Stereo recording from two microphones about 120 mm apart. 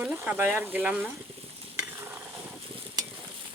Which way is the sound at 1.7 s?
20° right (ahead or behind).